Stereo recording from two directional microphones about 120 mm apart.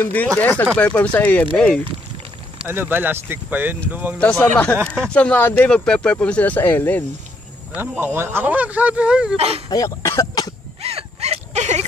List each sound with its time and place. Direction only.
0.0 s speech: 15° left (ahead or behind)
2.6 s speech: 15° right (ahead or behind)
4.2 s speech: 10° left (ahead or behind)
8.0 s speech: 20° right (ahead or behind)
9.7 s cough: 30° left (ahead or behind)
10.8 s a sound: 55° right (ahead or behind)